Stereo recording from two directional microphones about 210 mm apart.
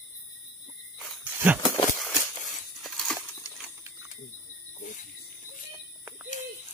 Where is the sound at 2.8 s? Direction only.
Centre (ahead or behind).